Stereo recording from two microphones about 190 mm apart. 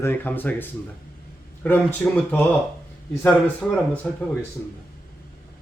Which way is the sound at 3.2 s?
10° left (ahead or behind).